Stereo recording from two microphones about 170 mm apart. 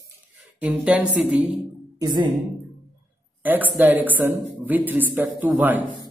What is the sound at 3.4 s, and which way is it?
Speech, 10° right (ahead or behind).